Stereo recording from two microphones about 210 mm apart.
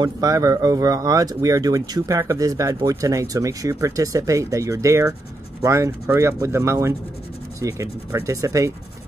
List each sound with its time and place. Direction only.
0.0 s speech: 15° right (ahead or behind)